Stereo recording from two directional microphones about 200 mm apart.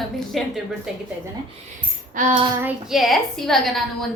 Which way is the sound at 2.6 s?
Centre (ahead or behind).